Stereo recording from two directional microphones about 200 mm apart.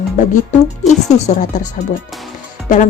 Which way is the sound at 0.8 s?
35° left (ahead or behind).